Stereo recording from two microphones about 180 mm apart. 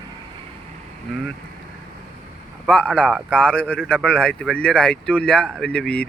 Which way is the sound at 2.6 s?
5° left (ahead or behind).